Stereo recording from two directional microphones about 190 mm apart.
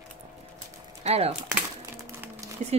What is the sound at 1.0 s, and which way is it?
Speech, 35° right (ahead or behind).